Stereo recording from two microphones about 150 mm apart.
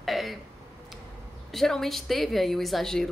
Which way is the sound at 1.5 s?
Centre (ahead or behind).